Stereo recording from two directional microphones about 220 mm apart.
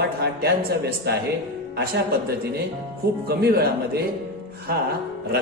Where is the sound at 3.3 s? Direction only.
45° right (ahead or behind).